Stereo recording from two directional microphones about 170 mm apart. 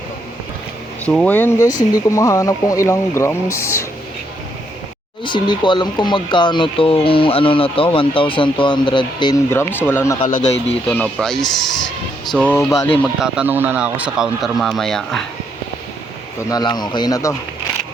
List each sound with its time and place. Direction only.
1.0 s speech: 5° left (ahead or behind)
5.2 s speech: 30° left (ahead or behind)
9.5 s speech: 15° left (ahead or behind)
13.1 s speech: 5° right (ahead or behind)
16.5 s speech: 25° left (ahead or behind)